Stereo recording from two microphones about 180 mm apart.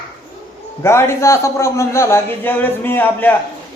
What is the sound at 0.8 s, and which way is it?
A man's voice, 15° left (ahead or behind).